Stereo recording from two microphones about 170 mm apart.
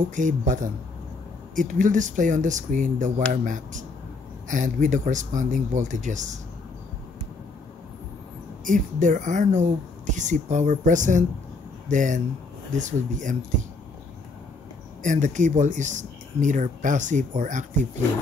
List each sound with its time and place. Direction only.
0.0 s speech: 50° right (ahead or behind)
8.6 s speech: 50° right (ahead or behind)
15.0 s speech: 45° right (ahead or behind)